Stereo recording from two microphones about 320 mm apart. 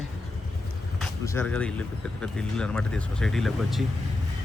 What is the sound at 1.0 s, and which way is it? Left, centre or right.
Speech, centre.